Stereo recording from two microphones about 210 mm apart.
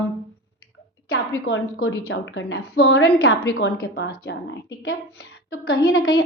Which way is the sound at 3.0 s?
50° left (ahead or behind).